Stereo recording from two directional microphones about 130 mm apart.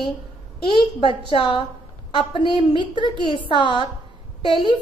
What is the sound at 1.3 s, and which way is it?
A woman's voice, 40° left (ahead or behind).